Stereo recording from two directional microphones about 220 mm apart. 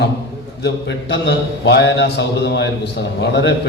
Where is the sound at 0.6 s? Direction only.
55° left (ahead or behind).